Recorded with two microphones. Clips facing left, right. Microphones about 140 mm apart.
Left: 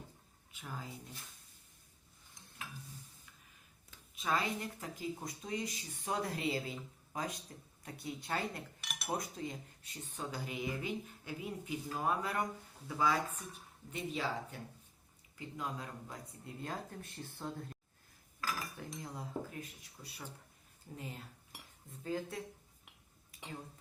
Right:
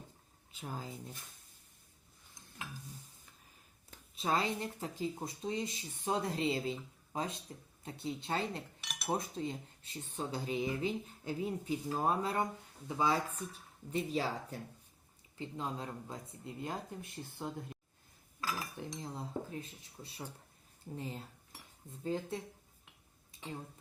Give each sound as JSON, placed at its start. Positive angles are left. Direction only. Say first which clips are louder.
{"t": 0.5, "sound": "speech", "louder": "right 3 dB", "side_deg": -30}
{"t": 4.1, "sound": "speech", "louder": "right 2 dB", "side_deg": -30}
{"t": 8.8, "sound": "cutlery", "louder": "even", "side_deg": 0}
{"t": 9.0, "sound": "speech", "louder": "right 3 dB", "side_deg": -30}
{"t": 18.3, "sound": "cutlery", "louder": "right 1 dB", "side_deg": -25}
{"t": 22.0, "sound": "speech", "louder": "right 2 dB", "side_deg": -25}